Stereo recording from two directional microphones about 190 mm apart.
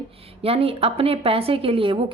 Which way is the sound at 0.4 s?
30° right (ahead or behind).